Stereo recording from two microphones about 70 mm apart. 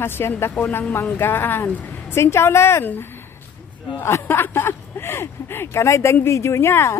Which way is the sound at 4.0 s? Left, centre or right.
Left.